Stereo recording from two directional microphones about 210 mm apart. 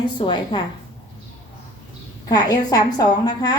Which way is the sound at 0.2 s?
20° left (ahead or behind).